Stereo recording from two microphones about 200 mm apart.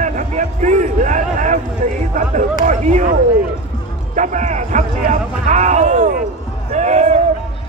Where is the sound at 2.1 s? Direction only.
40° right (ahead or behind).